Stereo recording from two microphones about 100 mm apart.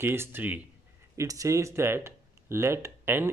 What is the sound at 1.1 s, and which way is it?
Speech, 35° right (ahead or behind).